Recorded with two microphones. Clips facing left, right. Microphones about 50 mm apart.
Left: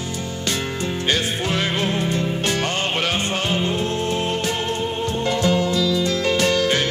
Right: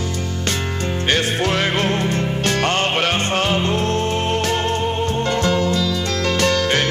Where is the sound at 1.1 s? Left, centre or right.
Right.